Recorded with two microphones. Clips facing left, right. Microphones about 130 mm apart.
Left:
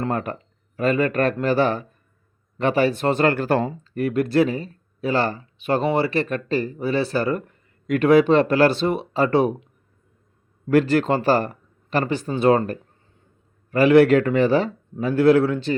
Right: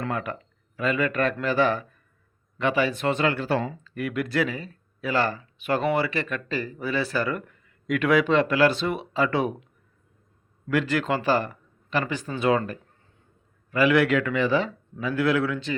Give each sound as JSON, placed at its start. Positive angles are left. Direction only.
{"t": 0.0, "sound": "speech", "side_deg": 40}
{"t": 10.7, "sound": "speech", "side_deg": 35}